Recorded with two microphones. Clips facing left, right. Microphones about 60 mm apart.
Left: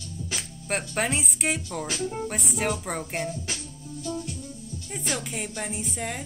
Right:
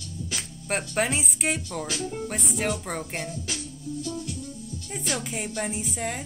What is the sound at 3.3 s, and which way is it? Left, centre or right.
Speech, left.